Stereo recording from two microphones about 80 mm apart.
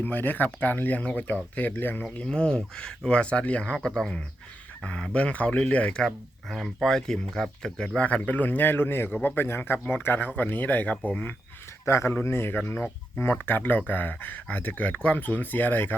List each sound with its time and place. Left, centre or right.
0.0 s speech: left
2.0 s speech: centre
6.1 s speech: centre
11.9 s a man's voice: left